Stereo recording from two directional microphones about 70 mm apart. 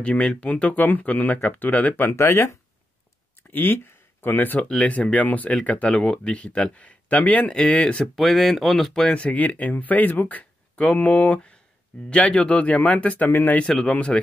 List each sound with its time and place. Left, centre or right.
0.0 s speech: centre; by 2.5 s left
3.5 s speech: left; by 8.3 s centre
8.3 s speech: centre
9.2 s speech: centre
13.6 s speech: centre